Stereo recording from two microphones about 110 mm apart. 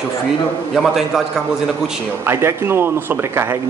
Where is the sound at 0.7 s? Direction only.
Centre (ahead or behind).